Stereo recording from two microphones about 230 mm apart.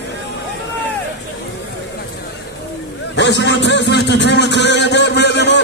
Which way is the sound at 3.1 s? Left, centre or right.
Left.